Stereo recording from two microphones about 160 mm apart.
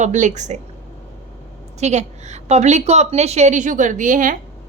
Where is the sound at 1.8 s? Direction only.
45° right (ahead or behind).